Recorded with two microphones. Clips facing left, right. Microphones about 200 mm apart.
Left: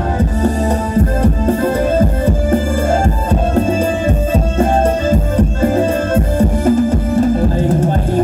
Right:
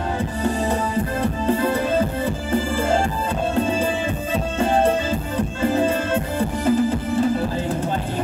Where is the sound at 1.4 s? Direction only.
45° left (ahead or behind).